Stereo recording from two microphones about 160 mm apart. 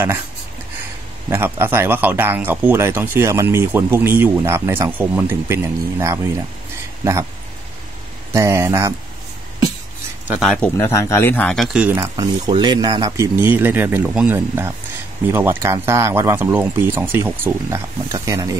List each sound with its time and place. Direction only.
1.3 s speech: 15° right (ahead or behind)
8.3 s speech: 20° right (ahead or behind)
10.4 s speech: 5° left (ahead or behind)
10.8 s speech: 15° left (ahead or behind); by 12.0 s 5° right (ahead or behind)
12.0 s speech: 25° right (ahead or behind)